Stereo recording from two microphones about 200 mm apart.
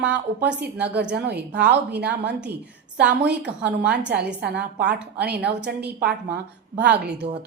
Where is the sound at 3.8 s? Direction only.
55° right (ahead or behind).